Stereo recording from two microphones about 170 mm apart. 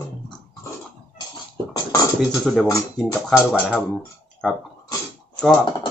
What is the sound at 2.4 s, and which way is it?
Speech, 5° left (ahead or behind).